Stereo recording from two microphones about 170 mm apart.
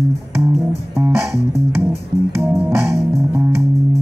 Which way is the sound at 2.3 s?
15° right (ahead or behind).